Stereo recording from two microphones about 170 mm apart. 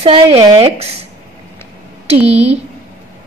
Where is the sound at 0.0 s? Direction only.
35° right (ahead or behind).